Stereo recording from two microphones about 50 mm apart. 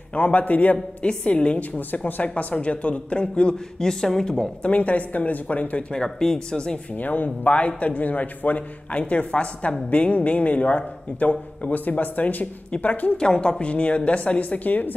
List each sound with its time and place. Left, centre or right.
0.1 s a man's voice: left
1.0 s a woman's voice: left
1.8 s a woman's voice: left; by 4.5 s centre
4.6 s a woman's voice: left
6.0 s speech: centre
7.0 s a man's voice: left
13.2 s a woman's voice: centre; by 15.0 s left